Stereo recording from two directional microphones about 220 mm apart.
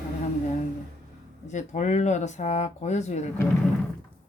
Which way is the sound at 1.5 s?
35° left (ahead or behind).